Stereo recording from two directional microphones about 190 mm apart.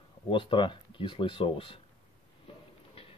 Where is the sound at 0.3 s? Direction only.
25° left (ahead or behind).